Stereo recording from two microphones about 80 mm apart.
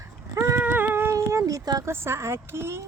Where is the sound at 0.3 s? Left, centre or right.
Right.